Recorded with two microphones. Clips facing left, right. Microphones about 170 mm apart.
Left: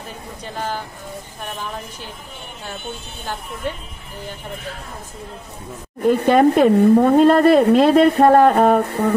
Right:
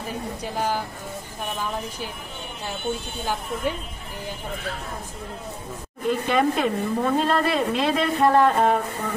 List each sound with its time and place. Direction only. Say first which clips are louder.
0.4 s speech: even; 10° right (ahead or behind)
3.6 s speech: even; 10° right (ahead or behind)
6.0 s speech: left 8 dB; 55° left (ahead or behind)